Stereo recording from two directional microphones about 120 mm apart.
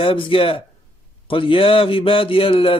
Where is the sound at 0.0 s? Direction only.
45° left (ahead or behind).